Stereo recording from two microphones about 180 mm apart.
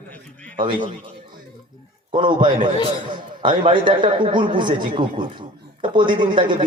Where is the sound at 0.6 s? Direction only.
30° right (ahead or behind).